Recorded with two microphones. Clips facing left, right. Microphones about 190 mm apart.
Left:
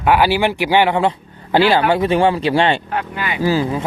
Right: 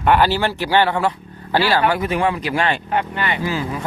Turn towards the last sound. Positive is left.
turn(degrees=35)  # may be behind; listen again after turning